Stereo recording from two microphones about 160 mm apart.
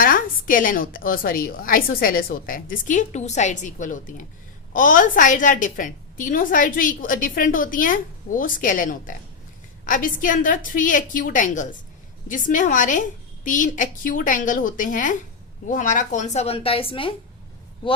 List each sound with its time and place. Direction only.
0.0 s a woman's voice: 60° left (ahead or behind); by 18.0 s 30° left (ahead or behind)